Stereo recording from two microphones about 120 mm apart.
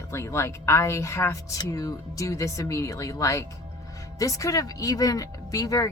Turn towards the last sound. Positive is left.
turn(degrees=30)  # may be behind; listen again after turning